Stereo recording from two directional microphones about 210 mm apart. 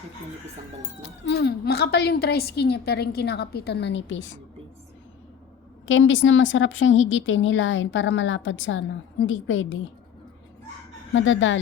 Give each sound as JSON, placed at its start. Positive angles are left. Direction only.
{"t": 1.0, "sound": "a woman's voice", "side_deg": 55}
{"t": 5.9, "sound": "a woman's voice", "side_deg": 65}
{"t": 11.1, "sound": "a woman's voice", "side_deg": 65}